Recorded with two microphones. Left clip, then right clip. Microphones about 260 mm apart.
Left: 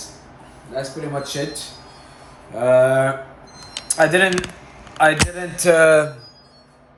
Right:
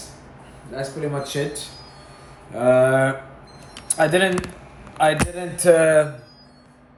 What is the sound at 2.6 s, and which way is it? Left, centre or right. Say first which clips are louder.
A man's voice: left 2 dB; centre.